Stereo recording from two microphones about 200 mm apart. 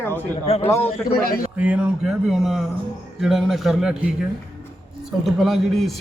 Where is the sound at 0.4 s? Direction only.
30° left (ahead or behind).